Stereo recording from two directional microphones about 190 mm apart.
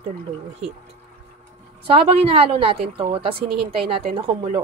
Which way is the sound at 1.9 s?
30° right (ahead or behind).